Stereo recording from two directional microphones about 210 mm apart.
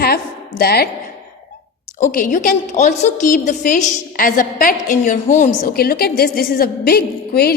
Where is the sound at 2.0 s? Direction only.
40° left (ahead or behind).